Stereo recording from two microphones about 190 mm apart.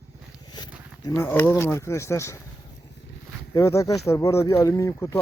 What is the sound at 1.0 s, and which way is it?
Speech, 10° left (ahead or behind).